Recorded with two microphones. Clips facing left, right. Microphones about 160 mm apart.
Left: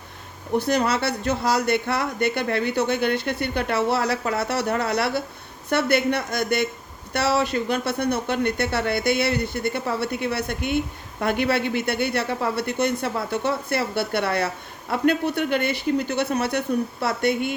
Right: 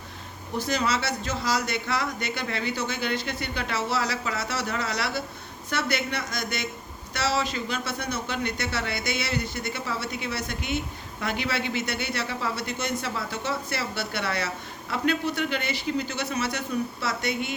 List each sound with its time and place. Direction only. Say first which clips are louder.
0.5 s speech: left 5 dB; 60° left (ahead or behind)